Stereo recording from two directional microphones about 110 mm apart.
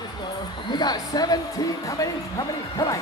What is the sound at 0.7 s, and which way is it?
Speech, 40° left (ahead or behind).